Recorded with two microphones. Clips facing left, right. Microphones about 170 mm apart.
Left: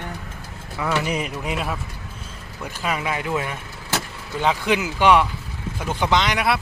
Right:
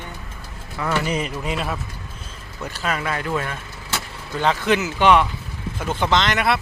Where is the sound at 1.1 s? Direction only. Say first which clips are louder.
Right 1 dB; 10° left (ahead or behind).